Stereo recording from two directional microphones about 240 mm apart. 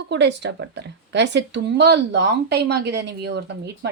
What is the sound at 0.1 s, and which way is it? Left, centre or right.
Speech, right.